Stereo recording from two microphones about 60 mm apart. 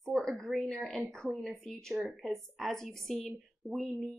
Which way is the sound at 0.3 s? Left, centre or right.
Centre.